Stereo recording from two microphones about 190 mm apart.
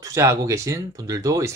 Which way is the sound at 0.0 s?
15° right (ahead or behind).